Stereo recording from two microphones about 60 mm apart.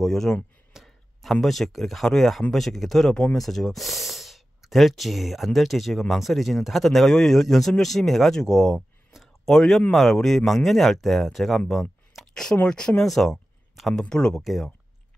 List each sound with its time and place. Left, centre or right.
0.0 s speech: centre
12.2 s a sound: centre
12.6 s speech: centre
14.0 s speech: centre